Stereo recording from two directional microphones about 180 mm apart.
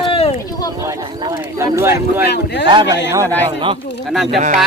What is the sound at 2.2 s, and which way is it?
Speech, 65° left (ahead or behind).